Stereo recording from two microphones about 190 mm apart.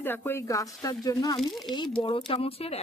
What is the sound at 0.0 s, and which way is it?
A woman's voice, 10° left (ahead or behind).